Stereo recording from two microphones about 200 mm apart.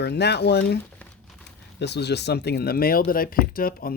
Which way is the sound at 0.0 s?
55° left (ahead or behind).